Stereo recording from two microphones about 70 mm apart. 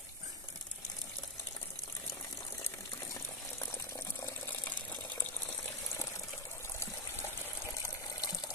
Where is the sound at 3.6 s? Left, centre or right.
Left.